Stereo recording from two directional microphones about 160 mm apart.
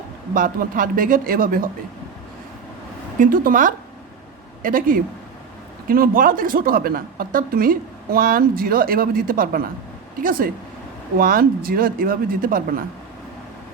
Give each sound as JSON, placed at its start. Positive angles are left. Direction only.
{"t": 0.3, "sound": "speech", "side_deg": -60}
{"t": 3.2, "sound": "speech", "side_deg": -60}